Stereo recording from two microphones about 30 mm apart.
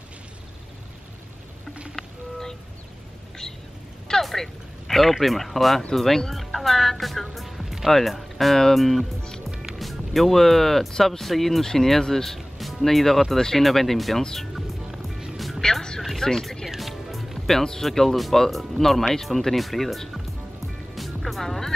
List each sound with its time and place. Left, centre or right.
2.0 s a sound: centre
4.2 s speech: centre
11.6 s speech: centre
12.4 s music: centre
12.8 s speech: centre
14.9 s music: centre
16.3 s speech: centre
16.6 s music: centre
17.8 s speech: centre
20.6 s music: centre